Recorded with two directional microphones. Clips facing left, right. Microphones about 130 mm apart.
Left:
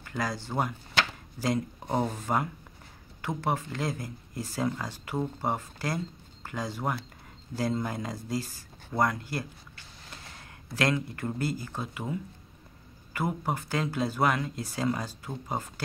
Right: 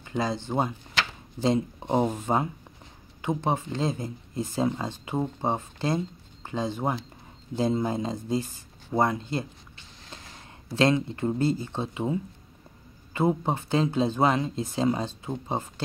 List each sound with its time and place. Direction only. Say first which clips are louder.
0.0 s speech: right 4 dB; 20° right (ahead or behind)